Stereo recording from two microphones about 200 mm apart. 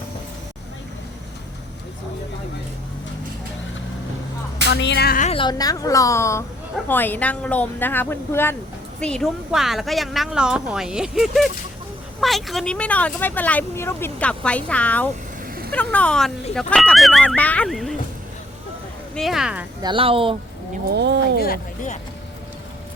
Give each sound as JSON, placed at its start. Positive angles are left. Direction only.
{"t": 4.7, "sound": "a woman's voice", "side_deg": 60}
{"t": 5.3, "sound": "a woman's voice", "side_deg": 25}
{"t": 19.1, "sound": "a woman's voice", "side_deg": 0}
{"t": 19.8, "sound": "speech", "side_deg": -25}
{"t": 20.9, "sound": "speech", "side_deg": -55}
{"t": 21.4, "sound": "speech", "side_deg": 45}